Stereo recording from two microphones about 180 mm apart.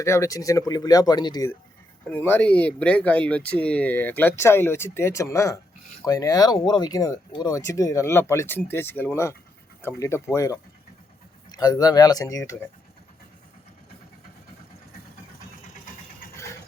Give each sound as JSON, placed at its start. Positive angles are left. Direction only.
{"t": 0.0, "sound": "speech", "side_deg": 15}